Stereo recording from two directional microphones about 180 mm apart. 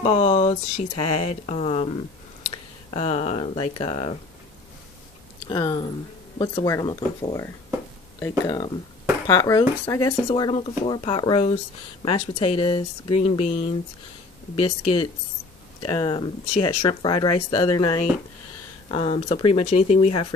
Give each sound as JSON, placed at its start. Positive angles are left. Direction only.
{"t": 0.0, "sound": "speech", "side_deg": 35}
{"t": 2.9, "sound": "speech", "side_deg": 30}
{"t": 5.5, "sound": "speech", "side_deg": 25}